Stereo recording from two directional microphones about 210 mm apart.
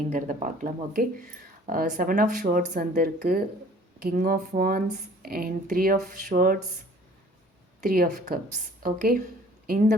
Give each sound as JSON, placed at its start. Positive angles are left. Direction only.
{"t": 0.1, "sound": "speech", "side_deg": -40}
{"t": 7.8, "sound": "speech", "side_deg": -40}